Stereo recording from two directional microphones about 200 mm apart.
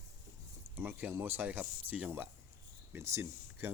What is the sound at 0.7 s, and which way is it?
Speech, 10° right (ahead or behind).